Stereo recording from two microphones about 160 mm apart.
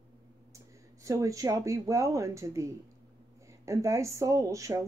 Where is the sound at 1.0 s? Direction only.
20° right (ahead or behind).